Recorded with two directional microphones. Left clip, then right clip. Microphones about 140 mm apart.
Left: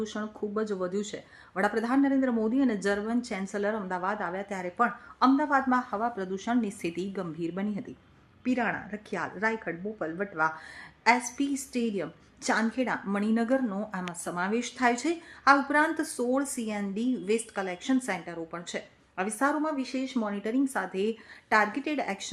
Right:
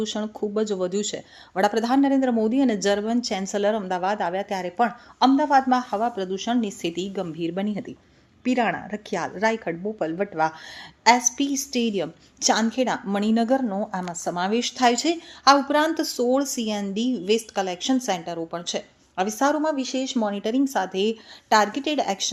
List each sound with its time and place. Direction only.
0.0 s a woman's voice: 25° right (ahead or behind)
20.3 s a woman's voice: 25° right (ahead or behind)